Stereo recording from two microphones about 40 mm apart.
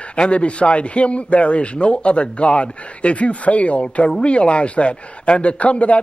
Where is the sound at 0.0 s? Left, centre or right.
Left.